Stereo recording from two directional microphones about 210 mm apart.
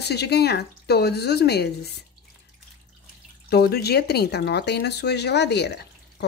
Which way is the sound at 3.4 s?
50° left (ahead or behind).